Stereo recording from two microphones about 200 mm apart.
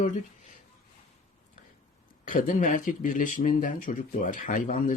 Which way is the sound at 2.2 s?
40° left (ahead or behind).